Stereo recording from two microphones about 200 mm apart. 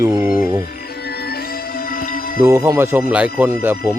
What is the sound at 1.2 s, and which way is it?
Music, 50° left (ahead or behind).